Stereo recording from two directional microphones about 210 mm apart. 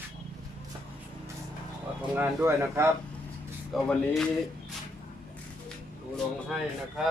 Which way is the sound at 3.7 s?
Centre (ahead or behind).